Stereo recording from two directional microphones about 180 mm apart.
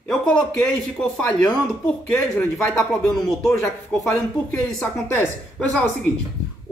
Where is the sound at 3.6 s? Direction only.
15° left (ahead or behind).